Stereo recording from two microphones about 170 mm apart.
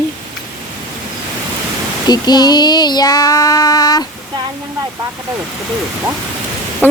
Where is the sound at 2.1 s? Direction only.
25° left (ahead or behind).